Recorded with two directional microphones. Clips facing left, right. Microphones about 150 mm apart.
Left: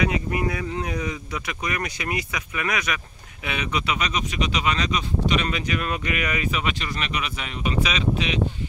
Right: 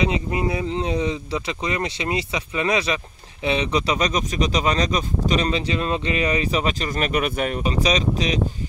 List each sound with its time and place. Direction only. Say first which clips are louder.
0.0 s speech: right 2 dB; 25° right (ahead or behind); by 7.6 s 50° right (ahead or behind)
7.6 s speech: even; 35° right (ahead or behind)